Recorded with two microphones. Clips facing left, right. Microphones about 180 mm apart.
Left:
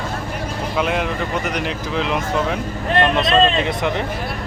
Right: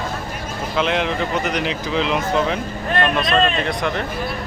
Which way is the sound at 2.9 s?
25° left (ahead or behind).